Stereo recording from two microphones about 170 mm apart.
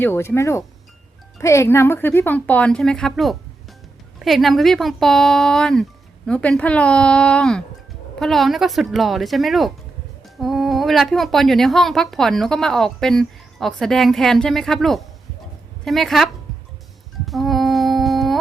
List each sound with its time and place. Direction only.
0.0 s speech: 15° left (ahead or behind)
17.2 s humming: centre (ahead or behind)